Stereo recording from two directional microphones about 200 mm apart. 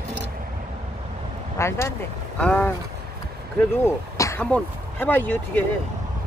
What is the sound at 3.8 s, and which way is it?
Speech, 15° left (ahead or behind).